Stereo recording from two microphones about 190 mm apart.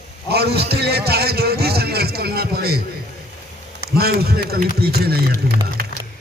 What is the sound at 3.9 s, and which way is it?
A man's voice, 55° right (ahead or behind).